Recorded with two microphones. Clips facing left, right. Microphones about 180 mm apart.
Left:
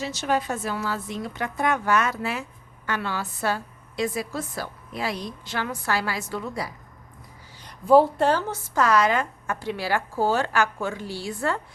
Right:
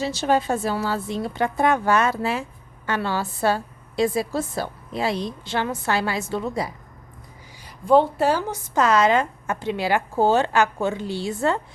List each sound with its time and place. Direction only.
0.0 s a woman's voice: 30° right (ahead or behind)
7.9 s a woman's voice: 5° left (ahead or behind)
8.2 s a woman's voice: 10° right (ahead or behind)